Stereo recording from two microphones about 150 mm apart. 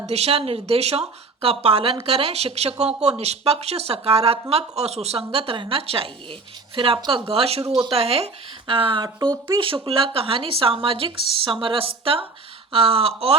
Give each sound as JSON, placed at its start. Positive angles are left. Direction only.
{"t": 0.1, "sound": "a woman's voice", "side_deg": -40}